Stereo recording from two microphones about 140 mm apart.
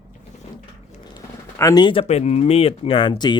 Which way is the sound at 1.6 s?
30° left (ahead or behind).